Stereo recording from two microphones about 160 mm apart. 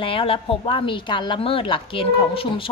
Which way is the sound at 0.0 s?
35° left (ahead or behind).